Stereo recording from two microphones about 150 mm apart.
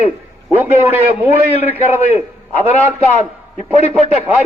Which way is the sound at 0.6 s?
15° right (ahead or behind).